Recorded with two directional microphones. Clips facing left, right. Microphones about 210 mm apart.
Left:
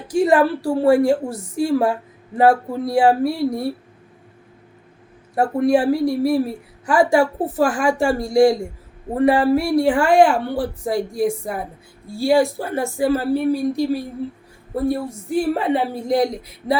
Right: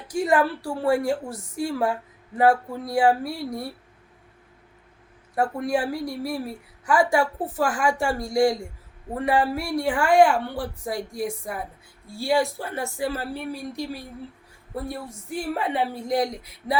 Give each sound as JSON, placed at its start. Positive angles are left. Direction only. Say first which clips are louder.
{"t": 0.1, "sound": "a woman's voice", "louder": "left 6 dB", "side_deg": 30}
{"t": 5.3, "sound": "a woman's voice", "louder": "left 7 dB", "side_deg": 30}